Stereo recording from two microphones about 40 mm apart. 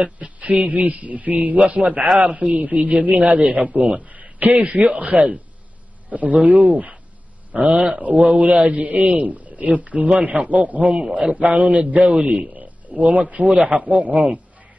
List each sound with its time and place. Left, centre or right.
0.0 s a man's voice: right
11.4 s a man's voice: right